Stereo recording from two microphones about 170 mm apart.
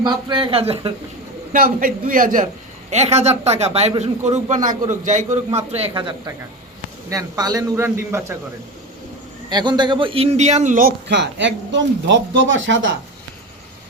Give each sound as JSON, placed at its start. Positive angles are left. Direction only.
{"t": 0.0, "sound": "speech", "side_deg": -25}
{"t": 1.5, "sound": "a man's voice", "side_deg": -55}
{"t": 2.9, "sound": "a man's voice", "side_deg": -40}
{"t": 5.9, "sound": "a man's voice", "side_deg": -25}
{"t": 9.5, "sound": "a man's voice", "side_deg": -25}
{"t": 11.1, "sound": "speech", "side_deg": -90}